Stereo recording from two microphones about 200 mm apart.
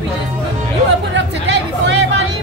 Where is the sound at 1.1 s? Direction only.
65° right (ahead or behind).